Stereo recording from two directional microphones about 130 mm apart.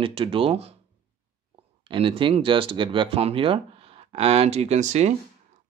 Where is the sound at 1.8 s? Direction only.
45° right (ahead or behind).